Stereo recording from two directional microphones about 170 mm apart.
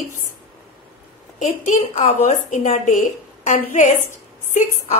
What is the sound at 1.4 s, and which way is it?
A woman's voice, 45° left (ahead or behind).